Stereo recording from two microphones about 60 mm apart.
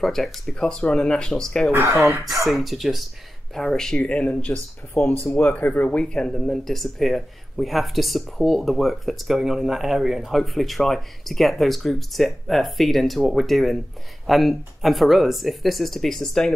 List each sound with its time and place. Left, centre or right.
0.0 s speech: centre
1.7 s speech: right
2.4 s speech: centre
3.5 s speech: centre